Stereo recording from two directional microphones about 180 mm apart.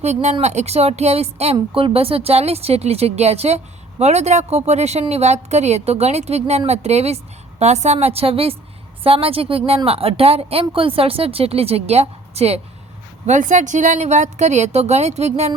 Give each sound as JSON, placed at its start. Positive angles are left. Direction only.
{"t": 0.0, "sound": "speech", "side_deg": -40}